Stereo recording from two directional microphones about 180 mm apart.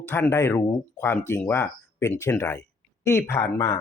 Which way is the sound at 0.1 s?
15° left (ahead or behind).